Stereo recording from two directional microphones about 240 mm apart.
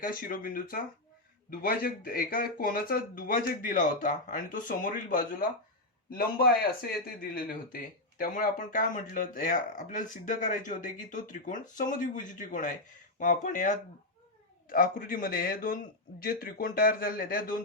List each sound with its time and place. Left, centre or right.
0.0 s speech: left